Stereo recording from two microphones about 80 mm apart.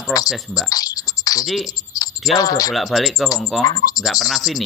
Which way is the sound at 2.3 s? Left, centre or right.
Left.